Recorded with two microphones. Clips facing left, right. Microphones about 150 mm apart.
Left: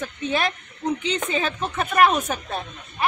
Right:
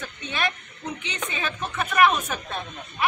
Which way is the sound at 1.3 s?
35° left (ahead or behind).